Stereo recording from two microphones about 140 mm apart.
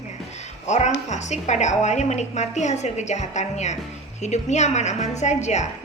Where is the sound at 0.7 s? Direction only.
55° left (ahead or behind).